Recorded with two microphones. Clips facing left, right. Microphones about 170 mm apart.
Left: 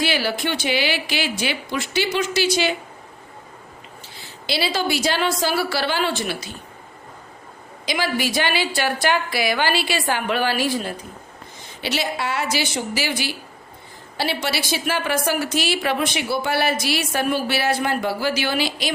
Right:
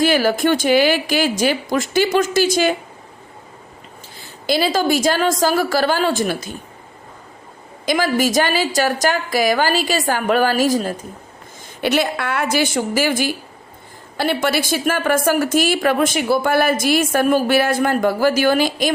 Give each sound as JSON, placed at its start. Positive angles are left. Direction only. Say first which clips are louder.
{"t": 0.0, "sound": "a woman's voice", "louder": "right 7 dB", "side_deg": -45}
{"t": 4.2, "sound": "a woman's voice", "louder": "right 6 dB", "side_deg": -45}
{"t": 7.9, "sound": "a woman's voice", "louder": "right 6 dB", "side_deg": -45}
{"t": 11.8, "sound": "a woman's voice", "louder": "right 6 dB", "side_deg": -55}